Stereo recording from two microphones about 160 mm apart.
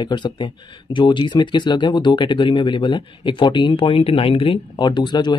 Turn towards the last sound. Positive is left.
turn(degrees=25)  # may be behind; listen again after turning